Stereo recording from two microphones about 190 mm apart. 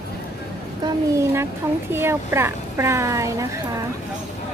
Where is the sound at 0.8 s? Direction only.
15° right (ahead or behind).